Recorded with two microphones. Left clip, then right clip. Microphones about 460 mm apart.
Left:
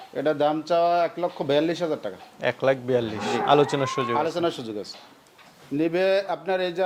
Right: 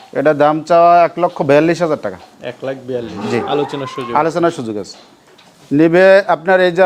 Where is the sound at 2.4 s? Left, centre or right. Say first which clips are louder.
Left 2 dB; left.